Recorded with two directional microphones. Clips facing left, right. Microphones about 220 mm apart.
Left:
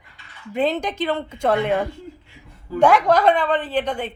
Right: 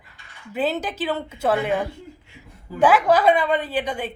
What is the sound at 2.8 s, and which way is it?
A woman's voice, 5° right (ahead or behind).